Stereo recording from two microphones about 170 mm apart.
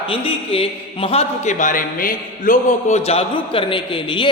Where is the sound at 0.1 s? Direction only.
35° left (ahead or behind).